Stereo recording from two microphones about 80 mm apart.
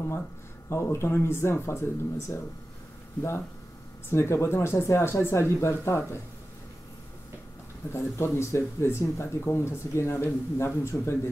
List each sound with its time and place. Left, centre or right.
0.7 s speech: left
7.9 s speech: left